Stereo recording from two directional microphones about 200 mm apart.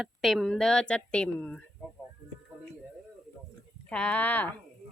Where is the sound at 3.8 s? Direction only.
5° left (ahead or behind).